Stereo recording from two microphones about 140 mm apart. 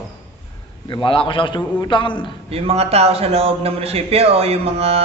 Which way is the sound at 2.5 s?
45° right (ahead or behind).